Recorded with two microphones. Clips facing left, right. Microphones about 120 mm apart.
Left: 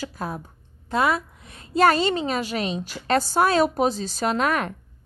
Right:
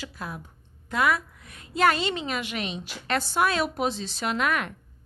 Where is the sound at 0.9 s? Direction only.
30° left (ahead or behind).